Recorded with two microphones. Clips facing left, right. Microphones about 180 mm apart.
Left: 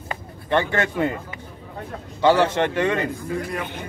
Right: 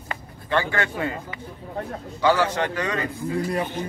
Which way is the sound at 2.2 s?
25° left (ahead or behind).